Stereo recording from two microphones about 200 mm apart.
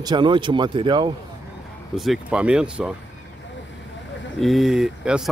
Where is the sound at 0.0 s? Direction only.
20° right (ahead or behind).